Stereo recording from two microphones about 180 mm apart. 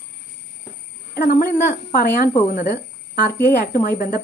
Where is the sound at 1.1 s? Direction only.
55° left (ahead or behind).